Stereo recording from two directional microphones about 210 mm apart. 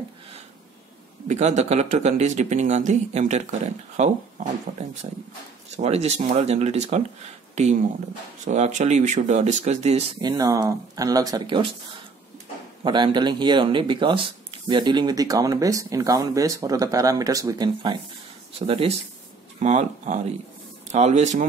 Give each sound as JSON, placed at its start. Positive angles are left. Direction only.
{"t": 1.2, "sound": "speech", "side_deg": -35}
{"t": 8.5, "sound": "speech", "side_deg": -35}
{"t": 12.8, "sound": "speech", "side_deg": -20}
{"t": 18.7, "sound": "speech", "side_deg": -30}